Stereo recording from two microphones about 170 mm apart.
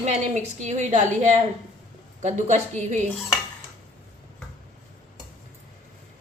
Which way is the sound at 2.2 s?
40° right (ahead or behind).